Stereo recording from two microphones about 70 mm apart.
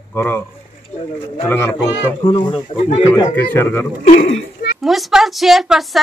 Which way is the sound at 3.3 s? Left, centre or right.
Left.